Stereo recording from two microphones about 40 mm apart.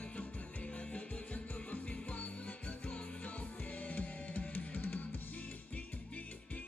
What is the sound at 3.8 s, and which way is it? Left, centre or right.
Music, left.